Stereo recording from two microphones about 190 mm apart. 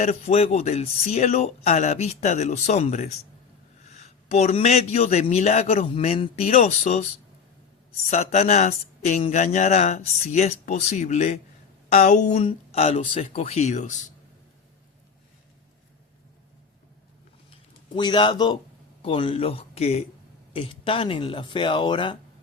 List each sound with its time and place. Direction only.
0.0 s speech: 35° left (ahead or behind)
4.3 s speech: 35° left (ahead or behind)
8.1 s speech: 35° left (ahead or behind)
17.9 s speech: 25° left (ahead or behind)